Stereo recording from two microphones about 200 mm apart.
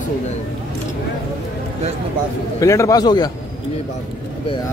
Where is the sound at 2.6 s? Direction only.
15° left (ahead or behind).